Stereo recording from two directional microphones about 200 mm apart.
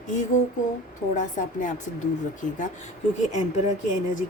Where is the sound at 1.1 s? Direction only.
40° left (ahead or behind).